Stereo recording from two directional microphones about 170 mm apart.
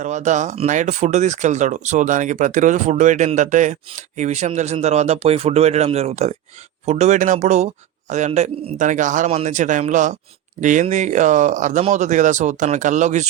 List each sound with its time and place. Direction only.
0.0 s speech: 45° right (ahead or behind)